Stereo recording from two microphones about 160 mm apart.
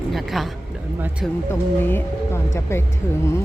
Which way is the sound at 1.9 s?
15° left (ahead or behind).